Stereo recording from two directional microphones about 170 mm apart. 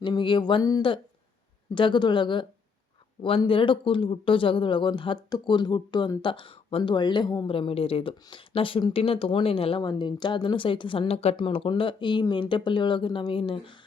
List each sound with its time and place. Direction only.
0.0 s speech: 25° left (ahead or behind)